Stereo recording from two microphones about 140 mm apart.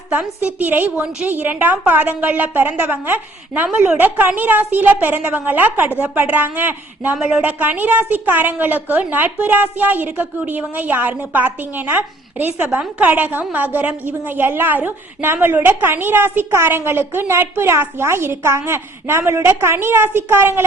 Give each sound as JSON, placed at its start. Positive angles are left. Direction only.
{"t": 0.1, "sound": "a woman's voice", "side_deg": -10}